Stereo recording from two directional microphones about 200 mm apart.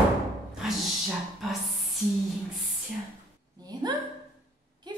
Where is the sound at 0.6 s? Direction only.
Centre (ahead or behind).